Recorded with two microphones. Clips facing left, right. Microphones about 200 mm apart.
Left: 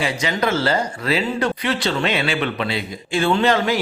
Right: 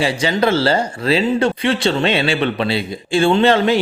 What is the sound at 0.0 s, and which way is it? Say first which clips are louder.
Speech: right 5 dB; 30° right (ahead or behind).